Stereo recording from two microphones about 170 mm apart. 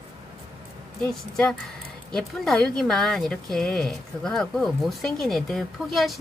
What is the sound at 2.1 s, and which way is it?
Speech, 5° left (ahead or behind).